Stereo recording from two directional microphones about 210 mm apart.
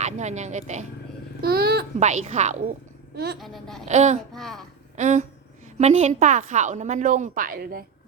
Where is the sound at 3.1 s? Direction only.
50° right (ahead or behind).